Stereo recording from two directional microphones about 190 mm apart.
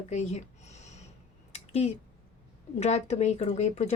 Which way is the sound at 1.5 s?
35° left (ahead or behind).